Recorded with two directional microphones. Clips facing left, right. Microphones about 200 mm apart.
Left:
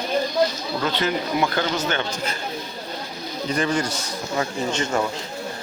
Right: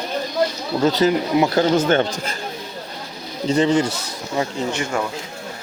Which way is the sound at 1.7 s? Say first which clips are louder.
Right 8 dB; 50° right (ahead or behind).